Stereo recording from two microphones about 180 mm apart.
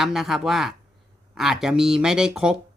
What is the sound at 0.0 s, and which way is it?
Speech, centre (ahead or behind).